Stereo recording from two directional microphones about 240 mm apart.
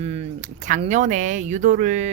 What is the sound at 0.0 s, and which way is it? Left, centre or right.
Speech, right.